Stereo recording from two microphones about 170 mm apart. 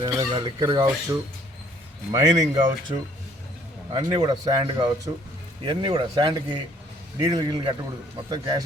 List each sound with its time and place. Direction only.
0.0 s speech: 25° right (ahead or behind)